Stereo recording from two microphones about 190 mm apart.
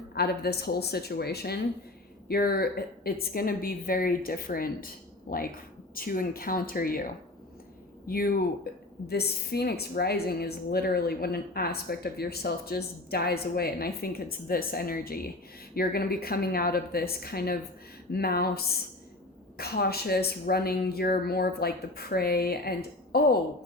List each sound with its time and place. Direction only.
0.1 s a woman's voice: 55° left (ahead or behind)